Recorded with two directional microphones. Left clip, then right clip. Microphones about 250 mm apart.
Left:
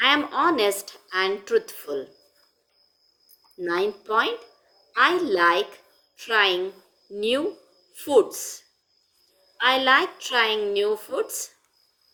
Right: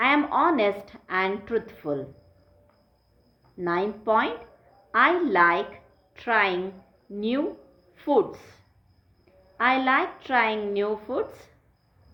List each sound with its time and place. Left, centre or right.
0.0 s a woman's voice: left
3.6 s a woman's voice: left